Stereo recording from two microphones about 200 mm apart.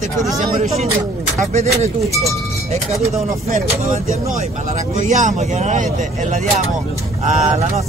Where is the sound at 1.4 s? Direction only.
35° right (ahead or behind).